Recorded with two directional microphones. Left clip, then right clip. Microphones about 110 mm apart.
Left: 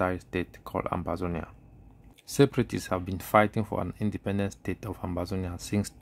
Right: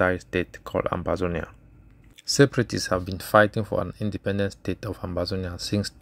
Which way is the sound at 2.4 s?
10° right (ahead or behind).